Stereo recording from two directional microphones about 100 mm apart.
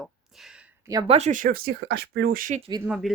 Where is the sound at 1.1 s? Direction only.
80° right.